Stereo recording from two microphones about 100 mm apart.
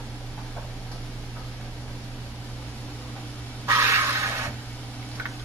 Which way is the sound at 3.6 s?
30° right (ahead or behind).